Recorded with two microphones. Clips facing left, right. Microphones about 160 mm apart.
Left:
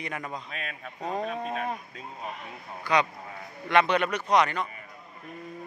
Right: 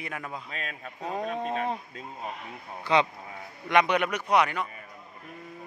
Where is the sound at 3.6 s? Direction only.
15° right (ahead or behind).